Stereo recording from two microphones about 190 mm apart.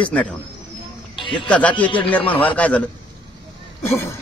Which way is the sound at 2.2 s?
30° left (ahead or behind).